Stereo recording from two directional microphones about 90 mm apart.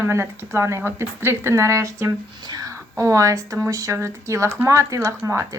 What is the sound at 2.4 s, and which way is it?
Speech, 45° right (ahead or behind).